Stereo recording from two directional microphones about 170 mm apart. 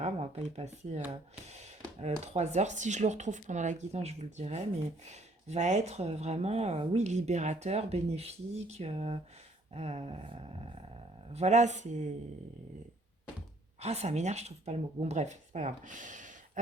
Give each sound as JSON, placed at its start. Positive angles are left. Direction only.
{"t": 0.0, "sound": "speech", "side_deg": -40}
{"t": 13.7, "sound": "speech", "side_deg": -40}